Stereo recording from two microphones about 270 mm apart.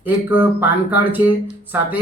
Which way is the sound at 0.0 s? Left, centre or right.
Centre.